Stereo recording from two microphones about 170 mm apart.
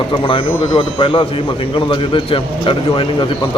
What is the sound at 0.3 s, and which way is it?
A man's voice, 30° left (ahead or behind).